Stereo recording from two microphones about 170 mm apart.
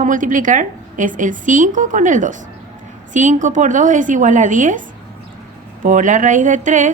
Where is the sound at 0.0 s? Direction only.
50° right (ahead or behind).